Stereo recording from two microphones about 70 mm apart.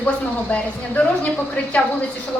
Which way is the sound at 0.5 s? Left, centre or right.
Centre.